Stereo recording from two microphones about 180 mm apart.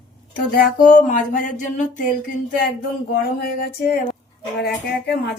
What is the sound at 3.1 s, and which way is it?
Speech, 60° left (ahead or behind).